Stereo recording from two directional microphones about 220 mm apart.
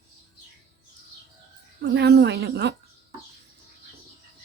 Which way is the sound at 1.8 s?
50° right (ahead or behind).